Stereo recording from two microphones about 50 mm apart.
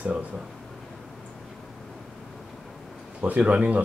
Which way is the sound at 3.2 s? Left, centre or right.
Right.